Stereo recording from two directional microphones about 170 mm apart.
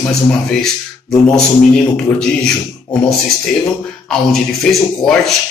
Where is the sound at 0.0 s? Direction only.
5° left (ahead or behind).